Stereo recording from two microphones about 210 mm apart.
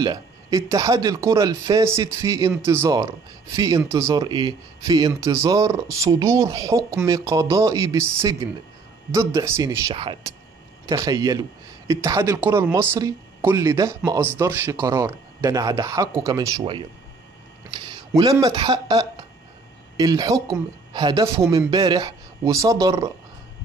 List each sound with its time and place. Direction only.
0.0 s speech: 15° right (ahead or behind)